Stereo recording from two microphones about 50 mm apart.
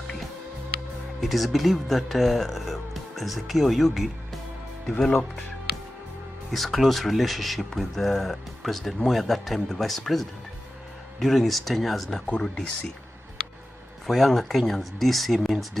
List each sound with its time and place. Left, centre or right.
1.2 s speech: centre
6.5 s speech: centre
12.3 s speech: left
14.0 s speech: centre